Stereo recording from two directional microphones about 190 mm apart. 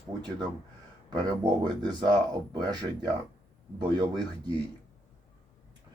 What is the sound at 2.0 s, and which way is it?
Speech, 20° right (ahead or behind).